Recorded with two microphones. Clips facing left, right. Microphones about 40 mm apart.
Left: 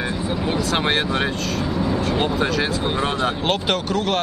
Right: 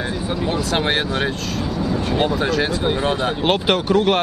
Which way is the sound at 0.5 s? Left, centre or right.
Centre.